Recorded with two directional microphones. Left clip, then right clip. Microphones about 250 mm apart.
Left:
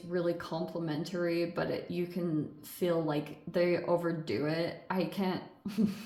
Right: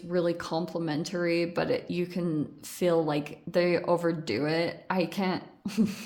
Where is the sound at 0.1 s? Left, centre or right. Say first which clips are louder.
Right 5 dB; right.